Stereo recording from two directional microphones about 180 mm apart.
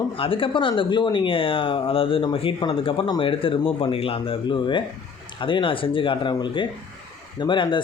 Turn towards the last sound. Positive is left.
turn(degrees=25)  # may be behind; listen again after turning